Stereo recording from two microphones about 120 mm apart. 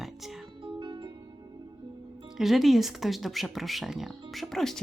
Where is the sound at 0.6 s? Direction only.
40° right (ahead or behind).